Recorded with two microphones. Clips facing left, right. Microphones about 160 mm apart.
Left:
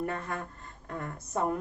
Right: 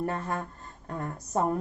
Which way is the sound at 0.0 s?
40° right (ahead or behind).